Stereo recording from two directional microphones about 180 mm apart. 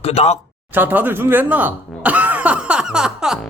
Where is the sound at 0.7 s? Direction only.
10° right (ahead or behind).